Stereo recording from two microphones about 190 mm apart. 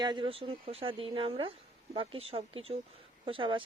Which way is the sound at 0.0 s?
25° right (ahead or behind).